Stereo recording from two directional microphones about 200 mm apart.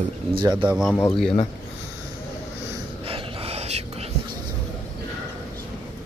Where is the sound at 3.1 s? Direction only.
30° right (ahead or behind).